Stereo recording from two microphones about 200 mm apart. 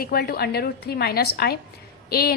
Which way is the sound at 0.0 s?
50° left (ahead or behind).